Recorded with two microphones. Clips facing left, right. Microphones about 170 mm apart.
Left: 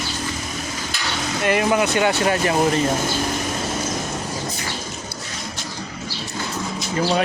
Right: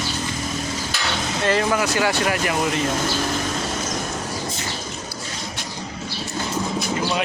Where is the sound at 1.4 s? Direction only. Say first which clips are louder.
Left 2 dB; 20° left (ahead or behind).